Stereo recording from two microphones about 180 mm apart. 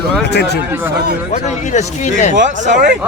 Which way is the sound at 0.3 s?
70° left (ahead or behind).